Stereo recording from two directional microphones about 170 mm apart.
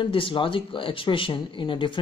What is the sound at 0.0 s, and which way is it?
Speech, 30° left (ahead or behind).